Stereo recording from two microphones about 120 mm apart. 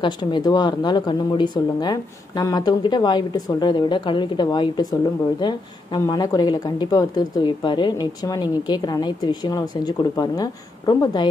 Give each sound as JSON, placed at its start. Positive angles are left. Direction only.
{"t": 0.0, "sound": "speech", "side_deg": 40}